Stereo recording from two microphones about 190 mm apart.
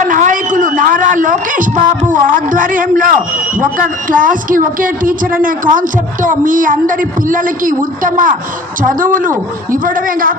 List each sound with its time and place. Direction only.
0.0 s a man's voice: 45° right (ahead or behind)